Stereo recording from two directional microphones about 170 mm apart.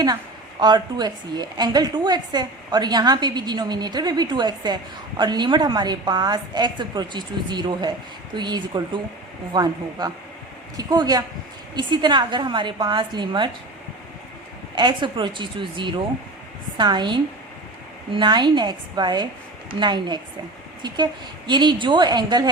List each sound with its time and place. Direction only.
0.6 s a woman's voice: 25° right (ahead or behind)
14.8 s a woman's voice: 25° right (ahead or behind)